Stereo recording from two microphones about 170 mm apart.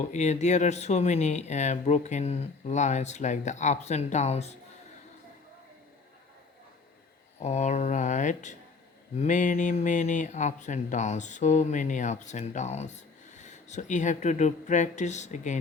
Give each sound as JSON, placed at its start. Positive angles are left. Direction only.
{"t": 0.0, "sound": "speech", "side_deg": 45}
{"t": 7.3, "sound": "speech", "side_deg": 40}